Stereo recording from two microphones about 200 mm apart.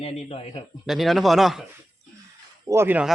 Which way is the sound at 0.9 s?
Centre (ahead or behind).